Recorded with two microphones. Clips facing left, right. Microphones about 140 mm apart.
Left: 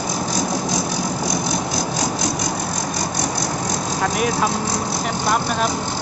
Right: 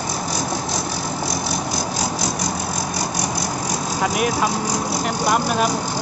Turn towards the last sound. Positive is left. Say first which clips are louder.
# right 1 dB
turn(degrees=-5)  # may be behind; listen again after turning